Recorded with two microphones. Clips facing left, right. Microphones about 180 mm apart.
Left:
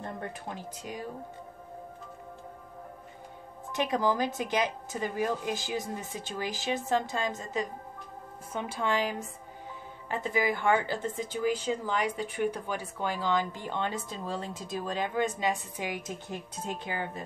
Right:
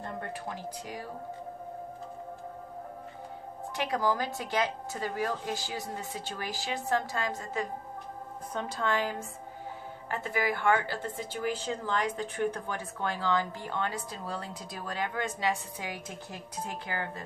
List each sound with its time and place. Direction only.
0.0 s speech: 20° left (ahead or behind)
3.7 s a woman's voice: 20° left (ahead or behind)